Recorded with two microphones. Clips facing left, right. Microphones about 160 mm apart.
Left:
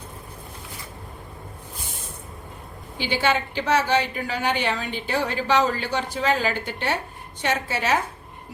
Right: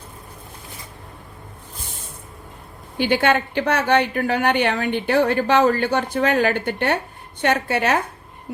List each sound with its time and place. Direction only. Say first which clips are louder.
3.0 s a woman's voice: right 5 dB; 55° right (ahead or behind)